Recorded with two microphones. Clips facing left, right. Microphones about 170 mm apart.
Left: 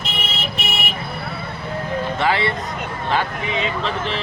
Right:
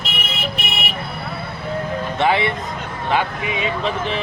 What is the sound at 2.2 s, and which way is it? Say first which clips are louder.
Speech: right 4 dB; 20° right (ahead or behind).